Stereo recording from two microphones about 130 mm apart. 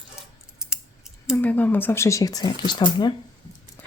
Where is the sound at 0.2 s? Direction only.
5° right (ahead or behind).